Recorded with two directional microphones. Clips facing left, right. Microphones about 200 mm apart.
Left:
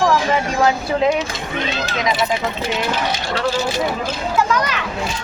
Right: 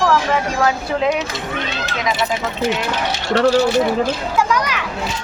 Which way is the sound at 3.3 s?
65° right (ahead or behind).